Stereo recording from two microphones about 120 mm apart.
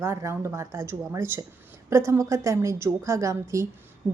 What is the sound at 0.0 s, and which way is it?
A woman's voice, 25° right (ahead or behind).